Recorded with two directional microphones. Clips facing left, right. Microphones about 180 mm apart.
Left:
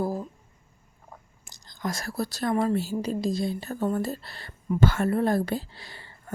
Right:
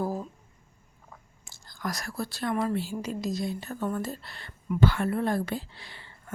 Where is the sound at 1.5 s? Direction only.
20° left (ahead or behind).